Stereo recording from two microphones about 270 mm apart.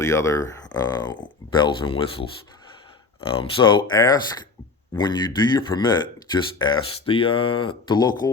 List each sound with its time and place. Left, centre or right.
0.0 s speech: centre